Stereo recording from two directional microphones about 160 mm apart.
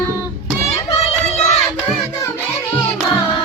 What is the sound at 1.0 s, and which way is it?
Child singing, 40° left (ahead or behind).